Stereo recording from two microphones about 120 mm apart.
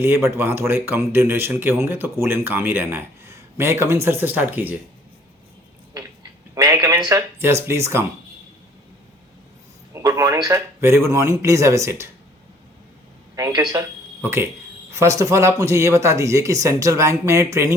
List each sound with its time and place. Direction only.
0.0 s speech: 20° right (ahead or behind)
6.5 s a sound: 25° right (ahead or behind)
7.1 s speech: 20° right (ahead or behind)
9.9 s a man's voice: 25° right (ahead or behind)
10.8 s speech: 20° right (ahead or behind)
13.3 s speech: 30° right (ahead or behind)
14.2 s speech: 20° right (ahead or behind)